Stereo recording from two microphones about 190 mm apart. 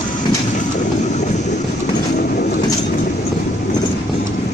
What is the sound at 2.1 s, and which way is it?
Bird, 55° left (ahead or behind).